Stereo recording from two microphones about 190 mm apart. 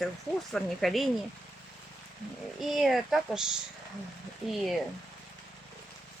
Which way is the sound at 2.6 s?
Centre (ahead or behind).